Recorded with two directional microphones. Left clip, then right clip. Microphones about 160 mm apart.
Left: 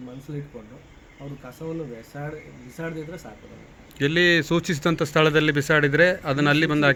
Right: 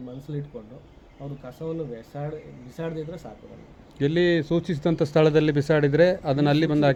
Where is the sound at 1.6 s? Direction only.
5° left (ahead or behind).